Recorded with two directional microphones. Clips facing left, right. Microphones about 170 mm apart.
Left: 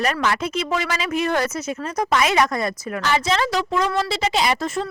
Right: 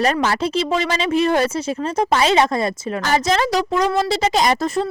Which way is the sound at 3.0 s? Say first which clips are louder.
Right 2 dB; 40° right (ahead or behind).